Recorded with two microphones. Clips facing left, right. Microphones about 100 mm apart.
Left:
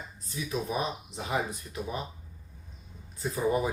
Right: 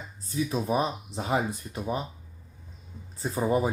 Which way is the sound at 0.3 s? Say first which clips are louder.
Right 6 dB; 30° right (ahead or behind).